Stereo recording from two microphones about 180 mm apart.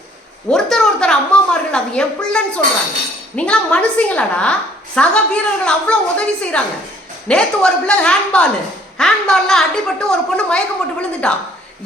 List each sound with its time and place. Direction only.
0.5 s a woman's voice: 5° left (ahead or behind)